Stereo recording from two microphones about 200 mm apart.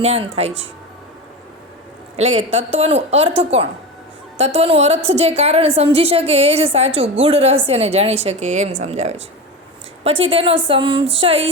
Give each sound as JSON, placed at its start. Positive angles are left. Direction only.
{"t": 0.0, "sound": "a woman's voice", "side_deg": -30}
{"t": 2.1, "sound": "a woman's voice", "side_deg": -35}